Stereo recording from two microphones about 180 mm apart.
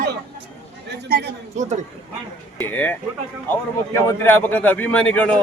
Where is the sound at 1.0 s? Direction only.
60° right (ahead or behind).